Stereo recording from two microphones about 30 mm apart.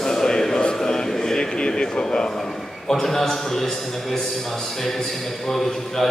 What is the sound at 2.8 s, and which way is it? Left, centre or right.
A man's voice, centre.